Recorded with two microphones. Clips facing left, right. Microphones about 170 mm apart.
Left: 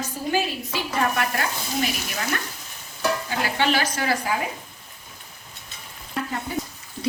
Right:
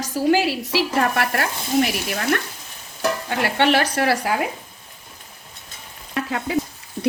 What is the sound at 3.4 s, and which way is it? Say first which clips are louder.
Speech: right 6 dB; 65° right (ahead or behind).